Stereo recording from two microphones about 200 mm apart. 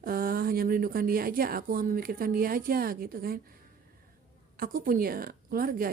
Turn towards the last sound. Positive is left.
turn(degrees=-45)  # may be behind; listen again after turning